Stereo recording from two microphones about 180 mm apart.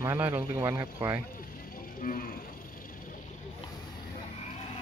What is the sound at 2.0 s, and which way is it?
Speech, 50° left (ahead or behind).